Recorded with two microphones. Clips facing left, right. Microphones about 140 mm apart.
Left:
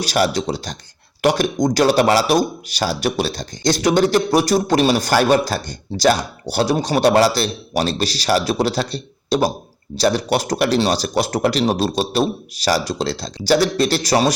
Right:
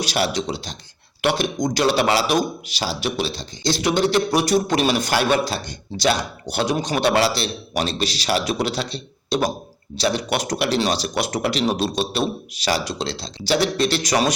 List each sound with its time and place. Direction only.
0.0 s speech: 40° left (ahead or behind)